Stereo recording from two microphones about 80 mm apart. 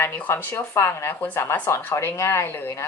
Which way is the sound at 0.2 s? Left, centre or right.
Left.